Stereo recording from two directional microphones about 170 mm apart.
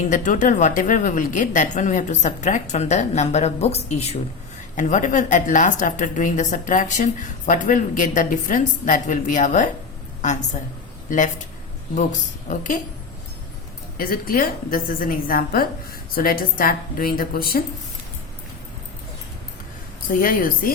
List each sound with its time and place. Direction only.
0.1 s a woman's voice: 50° left (ahead or behind)
12.5 s a woman's voice: 50° left (ahead or behind)
13.9 s a woman's voice: 60° left (ahead or behind)
20.1 s a woman's voice: 55° left (ahead or behind)